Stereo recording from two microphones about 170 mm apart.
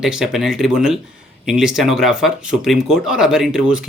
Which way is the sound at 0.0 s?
5° right (ahead or behind).